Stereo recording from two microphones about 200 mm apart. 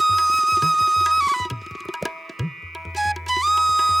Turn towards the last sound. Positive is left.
turn(degrees=0)  # may be behind; listen again after turning